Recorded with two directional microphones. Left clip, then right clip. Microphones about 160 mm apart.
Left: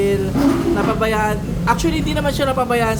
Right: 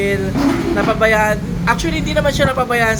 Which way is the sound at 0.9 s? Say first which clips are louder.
Right 5 dB; 20° left (ahead or behind).